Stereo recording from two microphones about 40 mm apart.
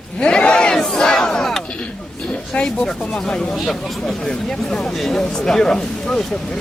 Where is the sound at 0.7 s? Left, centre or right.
Centre.